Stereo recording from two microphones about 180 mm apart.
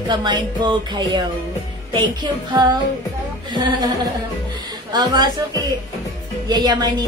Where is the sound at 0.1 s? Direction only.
25° right (ahead or behind).